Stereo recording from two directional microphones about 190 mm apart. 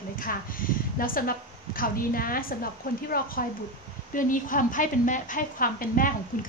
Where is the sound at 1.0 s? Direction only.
50° left (ahead or behind).